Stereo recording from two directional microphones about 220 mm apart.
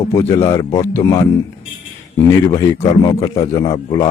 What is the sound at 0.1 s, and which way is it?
A man's voice, 10° left (ahead or behind).